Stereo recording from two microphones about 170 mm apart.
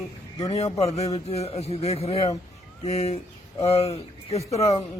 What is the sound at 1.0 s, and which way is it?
A man's voice, 35° left (ahead or behind).